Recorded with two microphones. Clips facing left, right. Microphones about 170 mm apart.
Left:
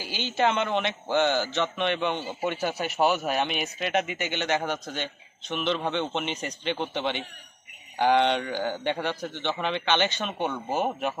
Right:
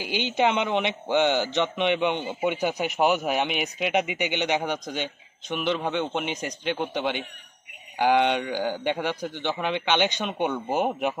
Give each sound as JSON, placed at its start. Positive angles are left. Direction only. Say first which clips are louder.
{"t": 0.0, "sound": "speech", "louder": "right 2 dB", "side_deg": -15}